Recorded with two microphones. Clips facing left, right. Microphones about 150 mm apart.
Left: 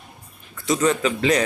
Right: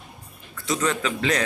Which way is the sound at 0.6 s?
10° left (ahead or behind).